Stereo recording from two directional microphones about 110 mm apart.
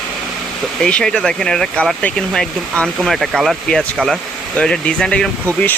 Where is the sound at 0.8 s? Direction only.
5° left (ahead or behind).